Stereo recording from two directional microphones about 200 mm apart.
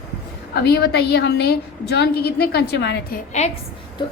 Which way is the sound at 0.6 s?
55° left (ahead or behind).